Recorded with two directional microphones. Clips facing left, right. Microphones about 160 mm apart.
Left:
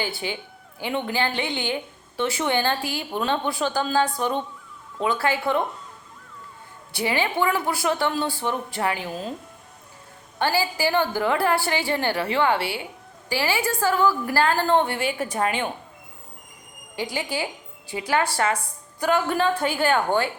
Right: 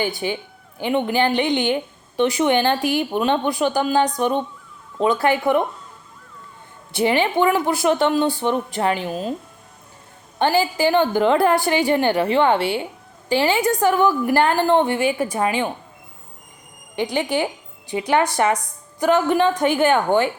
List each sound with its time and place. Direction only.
0.0 s a woman's voice: 15° right (ahead or behind)
6.9 s a woman's voice: 20° right (ahead or behind)
10.3 s a woman's voice: 20° right (ahead or behind)
16.9 s a woman's voice: 20° right (ahead or behind)